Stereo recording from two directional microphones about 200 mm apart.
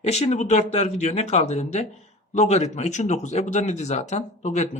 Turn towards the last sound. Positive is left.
turn(degrees=35)  # may be behind; listen again after turning